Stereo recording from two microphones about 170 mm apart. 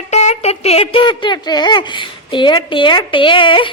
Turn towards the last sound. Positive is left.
turn(degrees=30)  # may be behind; listen again after turning